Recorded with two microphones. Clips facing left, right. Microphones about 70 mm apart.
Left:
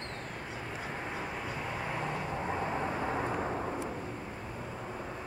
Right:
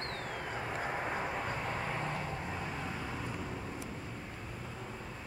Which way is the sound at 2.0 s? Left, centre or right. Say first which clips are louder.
Left 3 dB; left.